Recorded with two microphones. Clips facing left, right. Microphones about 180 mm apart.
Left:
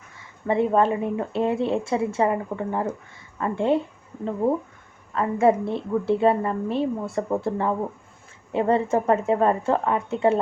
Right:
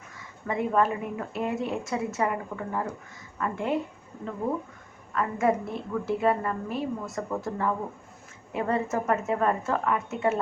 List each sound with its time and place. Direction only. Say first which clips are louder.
0.2 s speech: left 7 dB; 30° left (ahead or behind)
5.1 s speech: left 6 dB; 30° left (ahead or behind)